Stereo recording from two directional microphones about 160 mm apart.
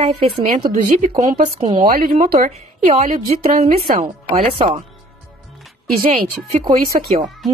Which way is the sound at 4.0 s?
35° right (ahead or behind).